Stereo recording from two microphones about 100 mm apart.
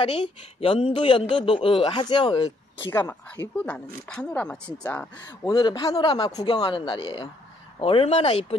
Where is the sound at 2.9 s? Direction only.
25° left (ahead or behind).